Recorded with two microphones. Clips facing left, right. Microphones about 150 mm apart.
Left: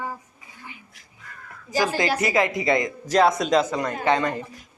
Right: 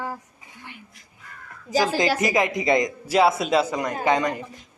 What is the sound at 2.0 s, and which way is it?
Speech, 20° right (ahead or behind).